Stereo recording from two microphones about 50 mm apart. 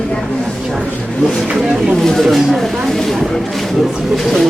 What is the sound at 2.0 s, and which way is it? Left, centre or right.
Speech, centre.